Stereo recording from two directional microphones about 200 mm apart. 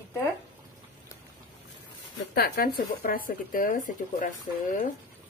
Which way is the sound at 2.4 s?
50° left (ahead or behind).